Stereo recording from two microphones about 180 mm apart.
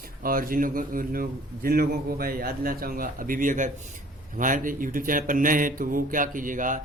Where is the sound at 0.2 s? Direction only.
50° right (ahead or behind).